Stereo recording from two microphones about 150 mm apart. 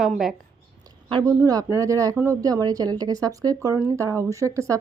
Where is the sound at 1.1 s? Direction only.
25° right (ahead or behind).